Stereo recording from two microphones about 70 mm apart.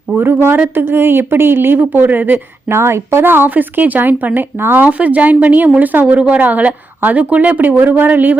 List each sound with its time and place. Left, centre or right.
0.2 s a woman's voice: right
2.6 s speech: right